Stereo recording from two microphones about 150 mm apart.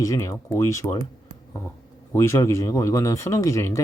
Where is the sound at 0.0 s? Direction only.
20° left (ahead or behind).